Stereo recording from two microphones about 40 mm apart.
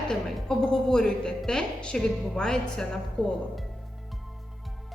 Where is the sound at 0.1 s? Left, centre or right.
Centre.